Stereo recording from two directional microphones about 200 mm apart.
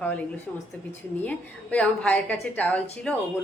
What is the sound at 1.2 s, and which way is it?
A woman's voice, 5° left (ahead or behind).